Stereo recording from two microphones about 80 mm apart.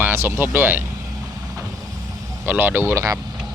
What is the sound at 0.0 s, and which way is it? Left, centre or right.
Speech, right.